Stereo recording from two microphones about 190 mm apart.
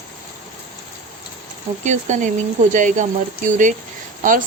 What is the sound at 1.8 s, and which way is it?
A woman's voice, 40° right (ahead or behind).